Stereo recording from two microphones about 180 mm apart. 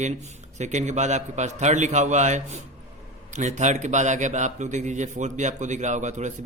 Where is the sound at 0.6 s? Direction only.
40° right (ahead or behind).